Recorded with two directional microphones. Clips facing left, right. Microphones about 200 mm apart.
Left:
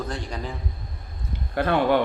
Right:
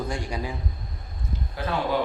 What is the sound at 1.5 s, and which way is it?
Speech, 60° left (ahead or behind).